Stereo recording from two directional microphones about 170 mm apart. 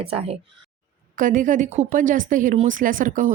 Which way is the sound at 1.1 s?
50° right (ahead or behind).